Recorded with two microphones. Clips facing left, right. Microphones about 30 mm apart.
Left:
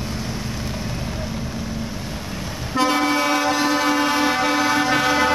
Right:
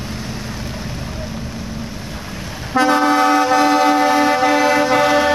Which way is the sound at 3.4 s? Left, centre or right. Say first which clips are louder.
Right 6 dB; centre.